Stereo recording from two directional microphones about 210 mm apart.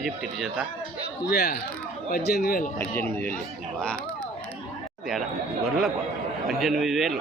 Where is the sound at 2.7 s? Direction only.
10° left (ahead or behind).